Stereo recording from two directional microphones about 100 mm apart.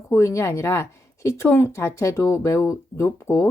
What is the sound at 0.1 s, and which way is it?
Speech, 30° left (ahead or behind).